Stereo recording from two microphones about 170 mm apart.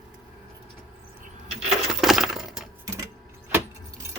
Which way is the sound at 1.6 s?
Centre (ahead or behind).